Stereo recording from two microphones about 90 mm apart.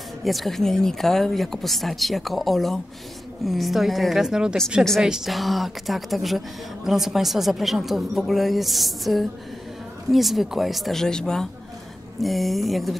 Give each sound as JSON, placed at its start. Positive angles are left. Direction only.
{"t": 0.2, "sound": "a woman's voice", "side_deg": 0}